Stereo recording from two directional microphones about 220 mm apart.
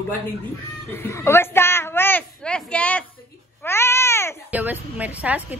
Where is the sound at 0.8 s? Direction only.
10° left (ahead or behind).